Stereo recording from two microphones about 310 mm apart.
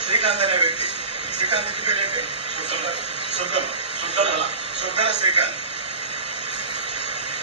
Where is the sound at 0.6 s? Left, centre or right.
Centre.